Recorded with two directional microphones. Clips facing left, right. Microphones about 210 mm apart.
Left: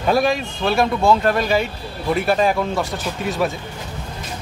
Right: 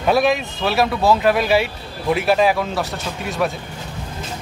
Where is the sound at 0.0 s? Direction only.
5° right (ahead or behind).